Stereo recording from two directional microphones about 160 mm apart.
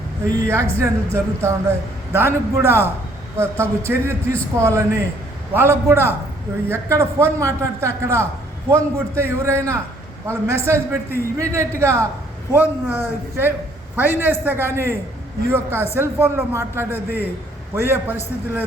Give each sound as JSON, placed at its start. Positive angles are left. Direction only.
{"t": 0.3, "sound": "a man's voice", "side_deg": -15}